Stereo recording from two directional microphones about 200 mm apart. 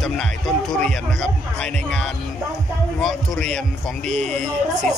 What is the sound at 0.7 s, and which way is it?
Speech, 5° left (ahead or behind).